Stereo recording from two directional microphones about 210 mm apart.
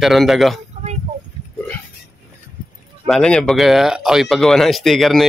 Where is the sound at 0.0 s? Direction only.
Centre (ahead or behind).